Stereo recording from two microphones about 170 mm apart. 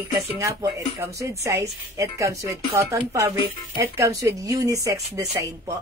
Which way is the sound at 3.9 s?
20° right (ahead or behind).